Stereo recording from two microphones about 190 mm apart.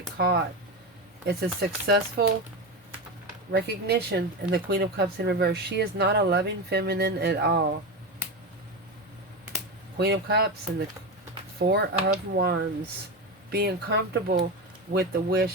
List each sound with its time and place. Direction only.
0.2 s speech: 60° right (ahead or behind)
1.5 s speech: 55° right (ahead or behind)
3.5 s speech: 60° right (ahead or behind)
10.0 s speech: 60° right (ahead or behind)